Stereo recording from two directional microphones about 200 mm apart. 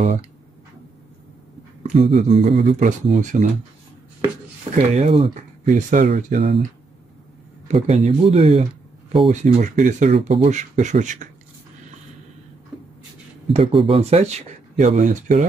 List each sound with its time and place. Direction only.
0.0 s speech: 35° right (ahead or behind)
1.8 s speech: 30° right (ahead or behind)
4.7 s speech: 35° right (ahead or behind)
7.6 s speech: 30° right (ahead or behind)
13.5 s speech: 30° right (ahead or behind)